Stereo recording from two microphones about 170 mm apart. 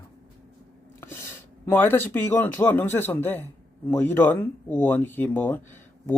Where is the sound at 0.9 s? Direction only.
15° left (ahead or behind).